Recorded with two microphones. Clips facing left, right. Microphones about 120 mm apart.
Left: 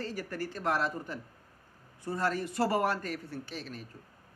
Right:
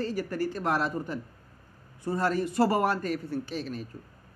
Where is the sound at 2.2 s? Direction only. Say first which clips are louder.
Right 5 dB; 20° right (ahead or behind).